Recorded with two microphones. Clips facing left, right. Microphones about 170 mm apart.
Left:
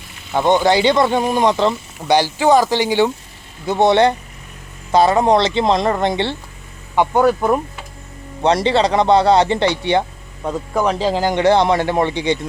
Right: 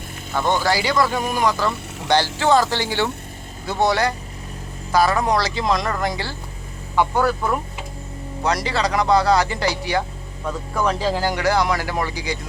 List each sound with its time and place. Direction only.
0.3 s speech: 20° left (ahead or behind)